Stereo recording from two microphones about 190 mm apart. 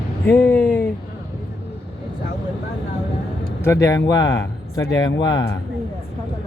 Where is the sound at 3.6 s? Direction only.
15° left (ahead or behind).